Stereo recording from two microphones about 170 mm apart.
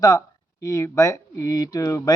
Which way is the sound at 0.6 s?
20° left (ahead or behind).